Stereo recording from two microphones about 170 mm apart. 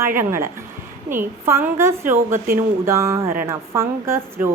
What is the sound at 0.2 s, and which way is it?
A woman's voice, 15° right (ahead or behind).